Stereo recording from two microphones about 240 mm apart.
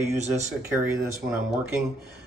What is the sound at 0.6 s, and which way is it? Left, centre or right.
Speech, centre.